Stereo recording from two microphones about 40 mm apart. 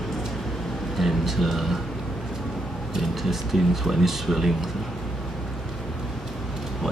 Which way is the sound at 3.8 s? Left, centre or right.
Centre.